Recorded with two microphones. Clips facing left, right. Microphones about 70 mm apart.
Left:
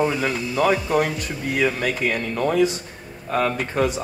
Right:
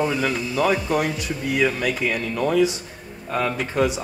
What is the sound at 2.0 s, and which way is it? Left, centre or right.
Speech, left.